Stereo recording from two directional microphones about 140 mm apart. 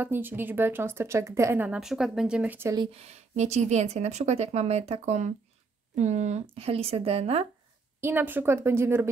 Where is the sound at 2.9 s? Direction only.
50° right (ahead or behind).